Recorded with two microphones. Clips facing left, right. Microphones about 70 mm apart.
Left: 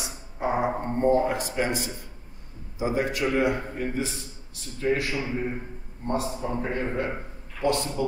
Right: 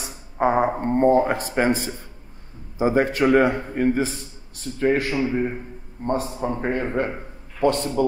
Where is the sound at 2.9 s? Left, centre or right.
Right.